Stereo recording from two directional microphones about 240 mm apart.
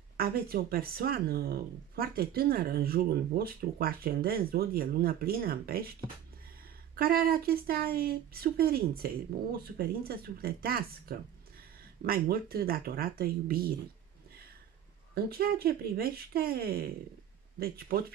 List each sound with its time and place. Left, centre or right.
0.2 s speech: right
15.1 s speech: right